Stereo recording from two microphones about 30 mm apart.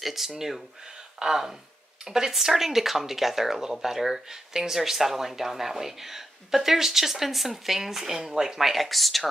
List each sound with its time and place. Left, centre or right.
0.0 s speech: centre
8.5 s speech: centre